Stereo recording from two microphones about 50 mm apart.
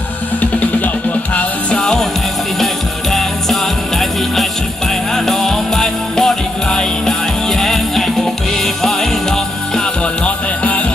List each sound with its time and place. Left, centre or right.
1.8 s music: centre
5.1 s music: centre
10.2 s music: left